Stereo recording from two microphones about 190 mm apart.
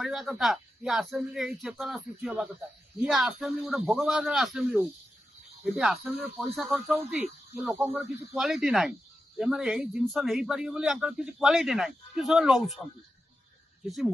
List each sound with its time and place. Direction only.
0.0 s speech: centre (ahead or behind)